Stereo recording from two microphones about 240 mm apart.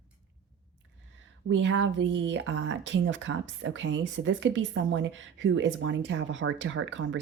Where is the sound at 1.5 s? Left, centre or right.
Right.